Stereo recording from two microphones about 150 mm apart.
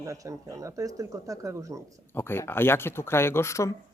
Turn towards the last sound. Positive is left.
turn(degrees=20)  # may be behind; listen again after turning